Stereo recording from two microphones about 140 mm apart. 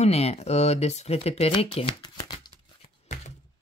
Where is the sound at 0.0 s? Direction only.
45° left (ahead or behind); by 2.5 s 30° left (ahead or behind).